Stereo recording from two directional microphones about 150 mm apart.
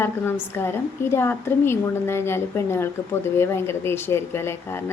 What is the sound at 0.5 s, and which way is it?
Speech, 15° left (ahead or behind).